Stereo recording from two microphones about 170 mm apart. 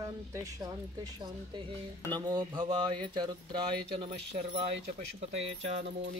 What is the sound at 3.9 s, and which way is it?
Speech, 40° right (ahead or behind).